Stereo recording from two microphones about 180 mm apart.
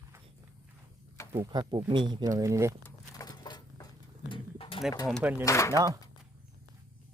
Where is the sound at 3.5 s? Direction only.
25° left (ahead or behind).